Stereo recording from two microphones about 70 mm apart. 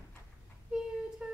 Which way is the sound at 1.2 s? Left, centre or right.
Centre.